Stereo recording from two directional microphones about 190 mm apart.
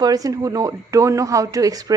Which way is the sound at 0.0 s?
20° right (ahead or behind).